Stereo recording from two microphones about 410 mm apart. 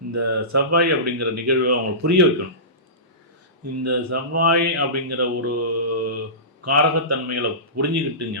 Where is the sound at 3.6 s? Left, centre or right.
Right.